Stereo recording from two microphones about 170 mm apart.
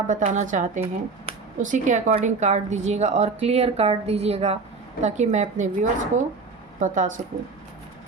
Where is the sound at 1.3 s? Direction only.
35° right (ahead or behind).